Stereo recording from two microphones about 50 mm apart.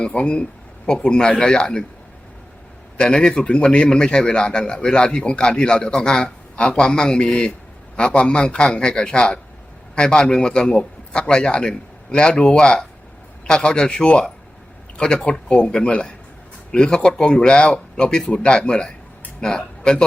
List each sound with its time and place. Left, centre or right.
0.0 s a man's voice: left
3.0 s a man's voice: centre